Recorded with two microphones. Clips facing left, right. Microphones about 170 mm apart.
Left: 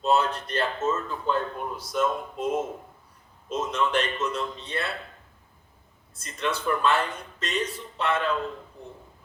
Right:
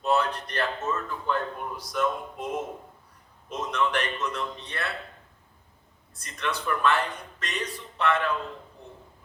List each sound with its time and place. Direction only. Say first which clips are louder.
0.0 s a man's voice: left 2 dB; 25° left (ahead or behind)
3.7 s a man's voice: even; 25° left (ahead or behind)
6.1 s a man's voice: left 2 dB; 25° left (ahead or behind)